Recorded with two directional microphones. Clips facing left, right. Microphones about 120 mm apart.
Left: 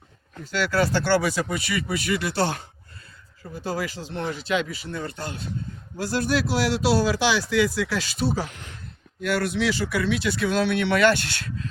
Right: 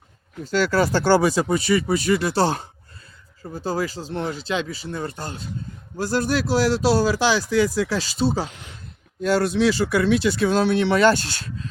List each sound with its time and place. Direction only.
0.5 s speech: 40° right (ahead or behind); by 8.8 s 20° right (ahead or behind)
9.2 s speech: 30° right (ahead or behind)